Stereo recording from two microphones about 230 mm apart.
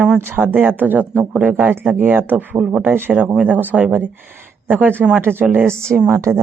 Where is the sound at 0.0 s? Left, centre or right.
Centre.